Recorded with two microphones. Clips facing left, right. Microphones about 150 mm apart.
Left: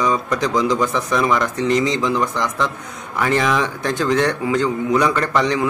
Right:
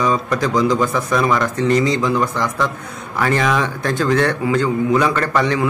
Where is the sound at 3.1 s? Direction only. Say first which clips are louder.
Right 1 dB; 15° left (ahead or behind).